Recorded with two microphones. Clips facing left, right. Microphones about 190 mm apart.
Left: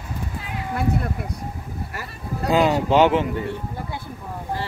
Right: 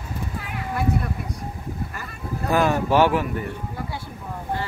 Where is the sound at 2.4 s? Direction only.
15° left (ahead or behind).